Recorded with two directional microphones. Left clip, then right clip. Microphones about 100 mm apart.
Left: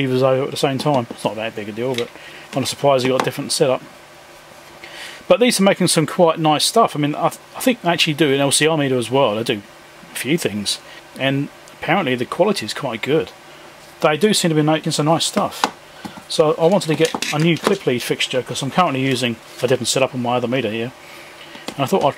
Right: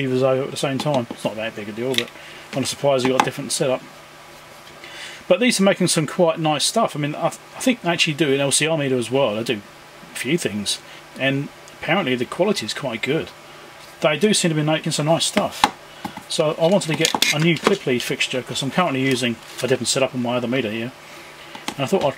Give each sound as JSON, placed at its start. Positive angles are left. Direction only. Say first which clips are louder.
{"t": 0.0, "sound": "speech", "louder": "left 3 dB", "side_deg": 35}
{"t": 5.3, "sound": "speech", "louder": "left 3 dB", "side_deg": 30}
{"t": 16.3, "sound": "speech", "louder": "left 3 dB", "side_deg": 30}
{"t": 17.0, "sound": "speech", "louder": "even", "side_deg": -25}
{"t": 17.8, "sound": "speech", "louder": "left 2 dB", "side_deg": 30}